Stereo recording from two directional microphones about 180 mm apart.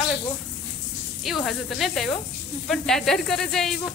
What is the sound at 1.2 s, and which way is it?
Speech, centre (ahead or behind).